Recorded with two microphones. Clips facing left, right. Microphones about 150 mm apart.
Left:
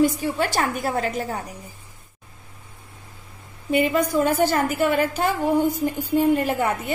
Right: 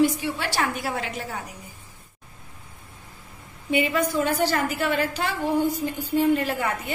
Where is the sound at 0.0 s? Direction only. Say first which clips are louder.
Left 2 dB; 45° left (ahead or behind).